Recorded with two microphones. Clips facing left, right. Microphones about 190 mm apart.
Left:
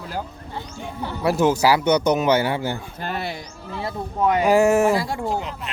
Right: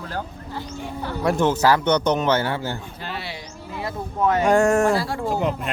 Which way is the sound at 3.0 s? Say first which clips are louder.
Left 5 dB; 50° left (ahead or behind).